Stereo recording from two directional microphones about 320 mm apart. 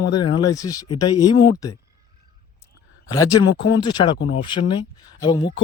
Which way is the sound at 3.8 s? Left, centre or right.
Centre.